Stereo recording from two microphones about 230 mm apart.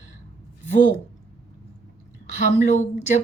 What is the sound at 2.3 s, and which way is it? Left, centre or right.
Speech, left.